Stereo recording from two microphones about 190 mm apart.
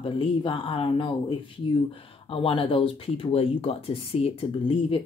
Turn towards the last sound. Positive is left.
turn(degrees=30)  # may be behind; listen again after turning